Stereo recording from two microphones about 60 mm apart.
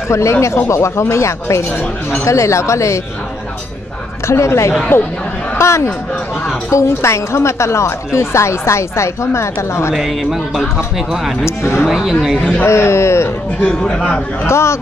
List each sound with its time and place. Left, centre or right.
0.1 s a woman's voice: left
4.3 s a woman's voice: left
9.9 s speech: centre
11.4 s a woman's voice: left
11.8 s speech: centre
12.6 s a woman's voice: left
13.6 s speech: left
14.4 s a woman's voice: left